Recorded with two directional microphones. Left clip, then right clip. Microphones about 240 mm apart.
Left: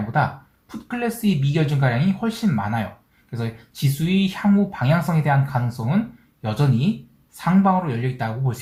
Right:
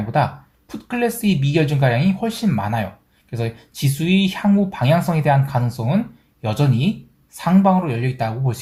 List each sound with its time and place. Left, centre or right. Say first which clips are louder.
0.9 s speech: right 4 dB; right